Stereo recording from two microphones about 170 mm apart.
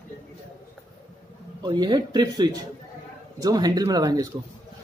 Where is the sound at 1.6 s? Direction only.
25° right (ahead or behind).